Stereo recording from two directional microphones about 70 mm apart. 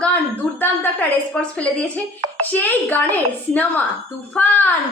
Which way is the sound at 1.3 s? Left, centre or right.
Centre.